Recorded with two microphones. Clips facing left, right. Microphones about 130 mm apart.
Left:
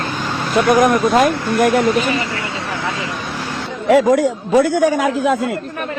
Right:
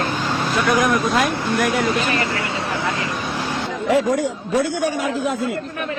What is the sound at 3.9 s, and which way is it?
A man's voice, 90° left.